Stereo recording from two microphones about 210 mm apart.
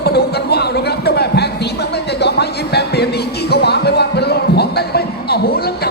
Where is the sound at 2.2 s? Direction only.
50° left (ahead or behind).